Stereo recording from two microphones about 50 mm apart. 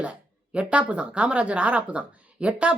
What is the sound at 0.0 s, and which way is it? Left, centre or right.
Speech, right.